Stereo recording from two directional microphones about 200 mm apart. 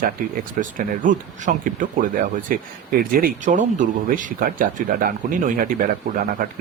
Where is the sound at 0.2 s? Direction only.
45° right (ahead or behind).